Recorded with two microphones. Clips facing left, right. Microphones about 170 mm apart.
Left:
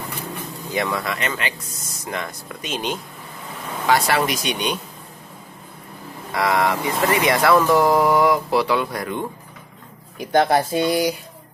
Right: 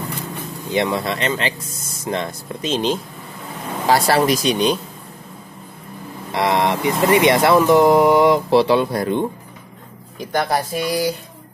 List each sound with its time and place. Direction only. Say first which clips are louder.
0.7 s speech: right 4 dB; 25° right (ahead or behind)
6.3 s speech: right 2 dB; 25° right (ahead or behind)
10.3 s speech: left 3 dB; 25° left (ahead or behind)